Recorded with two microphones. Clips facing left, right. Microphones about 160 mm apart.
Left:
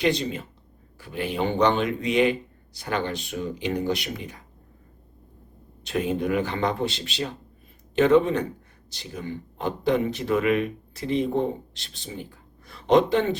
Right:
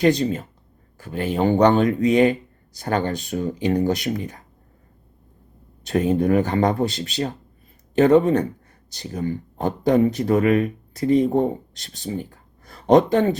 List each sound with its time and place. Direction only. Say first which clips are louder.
0.0 s speech: right 6 dB; 45° right (ahead or behind)
5.8 s speech: right 6 dB; 40° right (ahead or behind)